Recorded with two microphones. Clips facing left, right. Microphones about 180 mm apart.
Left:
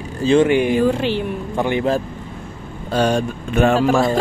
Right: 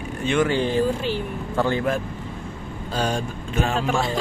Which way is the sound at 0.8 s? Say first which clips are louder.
Left 6 dB; 75° left (ahead or behind).